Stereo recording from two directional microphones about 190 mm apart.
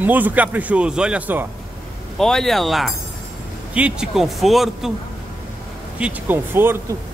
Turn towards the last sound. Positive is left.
turn(degrees=-10)  # may be behind; listen again after turning